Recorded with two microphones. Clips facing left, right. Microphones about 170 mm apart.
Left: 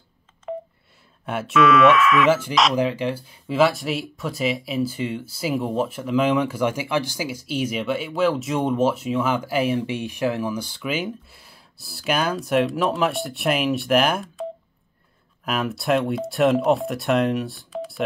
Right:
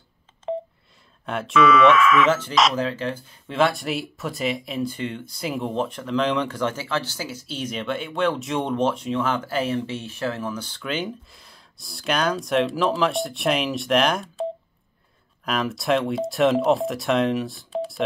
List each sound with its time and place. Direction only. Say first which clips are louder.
0.5 s telephone dialing: right 3 dB; 25° right (ahead or behind)
1.2 s speech: even; 5° left (ahead or behind)
15.4 s speech: even; 5° left (ahead or behind)